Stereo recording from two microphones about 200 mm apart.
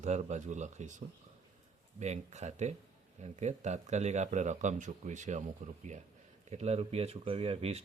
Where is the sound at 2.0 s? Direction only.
35° right (ahead or behind).